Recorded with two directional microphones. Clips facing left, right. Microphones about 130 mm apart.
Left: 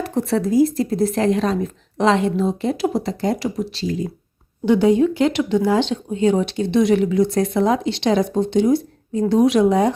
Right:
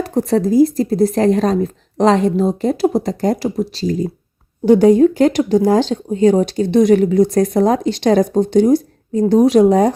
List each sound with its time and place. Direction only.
0.0 s speech: 35° right (ahead or behind)